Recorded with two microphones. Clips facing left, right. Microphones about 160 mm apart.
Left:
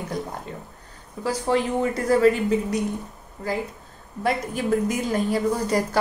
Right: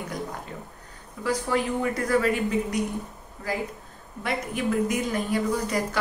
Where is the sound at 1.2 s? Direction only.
30° left (ahead or behind).